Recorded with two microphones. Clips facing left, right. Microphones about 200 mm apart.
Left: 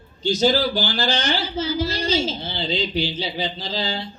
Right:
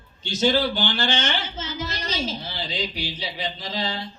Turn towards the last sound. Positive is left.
turn(degrees=30)  # may be behind; listen again after turning